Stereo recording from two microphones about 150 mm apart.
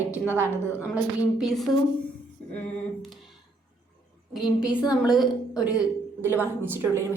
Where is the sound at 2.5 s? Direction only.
10° left (ahead or behind).